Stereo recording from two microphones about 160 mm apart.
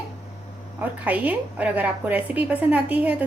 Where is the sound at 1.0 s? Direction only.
10° right (ahead or behind).